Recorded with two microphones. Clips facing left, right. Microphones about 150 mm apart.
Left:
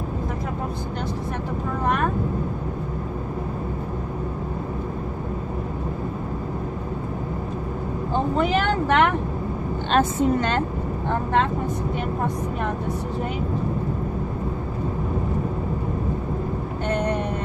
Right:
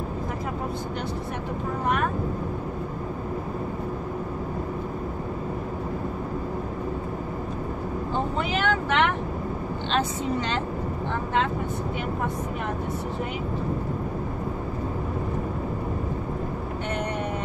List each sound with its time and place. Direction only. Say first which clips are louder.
8.4 s vehicle: left 5 dB; 45° left (ahead or behind)
9.8 s a woman's voice: left 7 dB; 50° left (ahead or behind)